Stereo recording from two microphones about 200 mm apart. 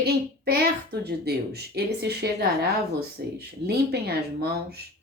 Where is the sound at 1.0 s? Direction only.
55° right (ahead or behind).